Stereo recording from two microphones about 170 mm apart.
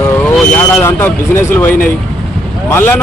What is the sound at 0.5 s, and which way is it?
Speech, 10° left (ahead or behind).